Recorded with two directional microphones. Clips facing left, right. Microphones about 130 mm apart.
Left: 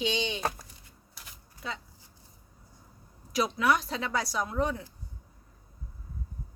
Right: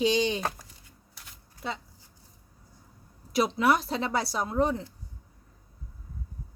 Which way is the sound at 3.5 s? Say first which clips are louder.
Right 3 dB; 30° right (ahead or behind).